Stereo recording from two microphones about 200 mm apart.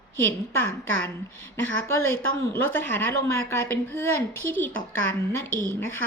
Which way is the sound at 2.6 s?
10° left (ahead or behind).